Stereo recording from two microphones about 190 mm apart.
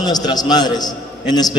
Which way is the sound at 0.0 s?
20° left (ahead or behind).